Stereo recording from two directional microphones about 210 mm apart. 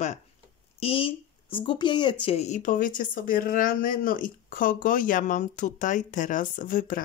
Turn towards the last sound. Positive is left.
turn(degrees=40)  # may be behind; listen again after turning